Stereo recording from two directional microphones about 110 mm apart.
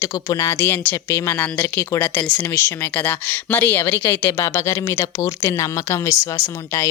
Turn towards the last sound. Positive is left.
turn(degrees=25)  # may be behind; listen again after turning